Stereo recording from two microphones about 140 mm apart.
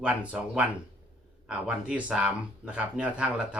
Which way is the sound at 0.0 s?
10° right (ahead or behind).